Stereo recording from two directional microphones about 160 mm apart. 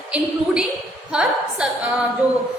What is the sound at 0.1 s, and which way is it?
A woman's voice, 5° right (ahead or behind).